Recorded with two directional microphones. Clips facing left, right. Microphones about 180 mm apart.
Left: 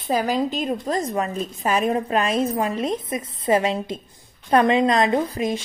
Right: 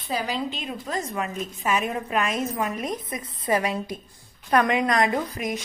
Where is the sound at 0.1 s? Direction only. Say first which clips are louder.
Left 6 dB; 45° left (ahead or behind).